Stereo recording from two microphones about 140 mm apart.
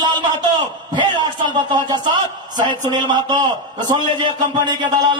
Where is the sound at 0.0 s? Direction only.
30° right (ahead or behind).